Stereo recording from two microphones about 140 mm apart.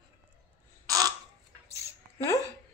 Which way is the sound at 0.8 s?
25° right (ahead or behind).